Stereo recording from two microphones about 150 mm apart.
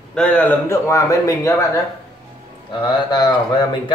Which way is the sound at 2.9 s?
30° left (ahead or behind).